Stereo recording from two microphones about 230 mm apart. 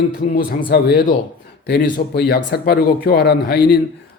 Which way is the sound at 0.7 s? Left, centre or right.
Left.